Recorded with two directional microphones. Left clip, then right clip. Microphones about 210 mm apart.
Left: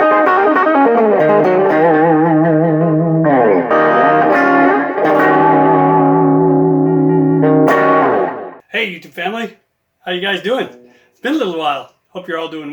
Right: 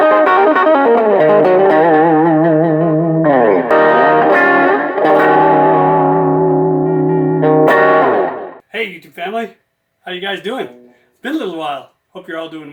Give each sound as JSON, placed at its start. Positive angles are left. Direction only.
{"t": 0.0, "sound": "music", "side_deg": -40}
{"t": 8.7, "sound": "a sound", "side_deg": 0}
{"t": 10.1, "sound": "a man's voice", "side_deg": 0}